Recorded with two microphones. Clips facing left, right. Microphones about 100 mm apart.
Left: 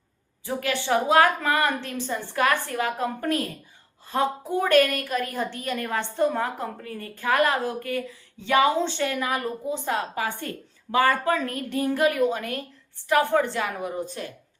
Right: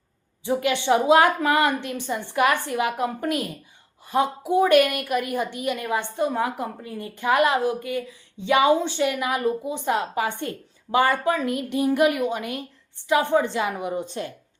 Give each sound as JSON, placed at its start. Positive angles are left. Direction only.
{"t": 0.4, "sound": "a woman's voice", "side_deg": -20}